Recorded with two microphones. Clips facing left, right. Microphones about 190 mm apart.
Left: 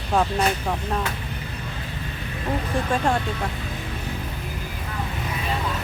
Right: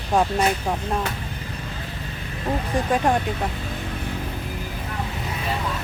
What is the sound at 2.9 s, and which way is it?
Speech, 15° right (ahead or behind).